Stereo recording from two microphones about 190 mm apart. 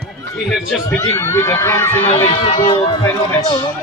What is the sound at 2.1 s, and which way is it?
Speech, 30° left (ahead or behind).